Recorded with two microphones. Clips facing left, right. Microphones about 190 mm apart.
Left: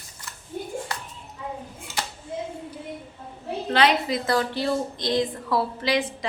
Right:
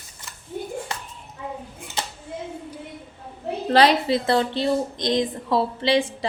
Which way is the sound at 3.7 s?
35° right (ahead or behind).